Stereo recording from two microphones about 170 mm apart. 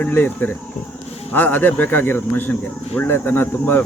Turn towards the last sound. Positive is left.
turn(degrees=10)  # may be behind; listen again after turning